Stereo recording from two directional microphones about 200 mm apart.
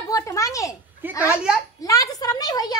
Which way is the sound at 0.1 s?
15° left (ahead or behind).